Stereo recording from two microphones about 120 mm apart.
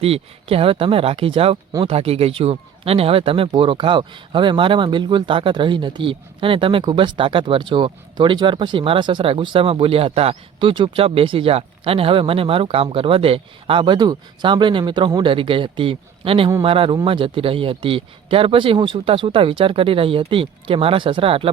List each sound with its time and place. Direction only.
0.0 s speech: 55° right (ahead or behind)